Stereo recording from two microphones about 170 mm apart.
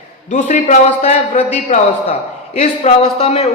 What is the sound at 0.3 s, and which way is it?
A man's voice, 45° left (ahead or behind).